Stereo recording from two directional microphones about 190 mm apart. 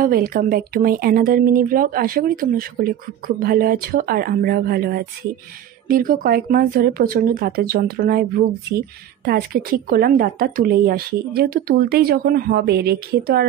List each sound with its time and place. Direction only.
0.0 s speech: 50° right (ahead or behind)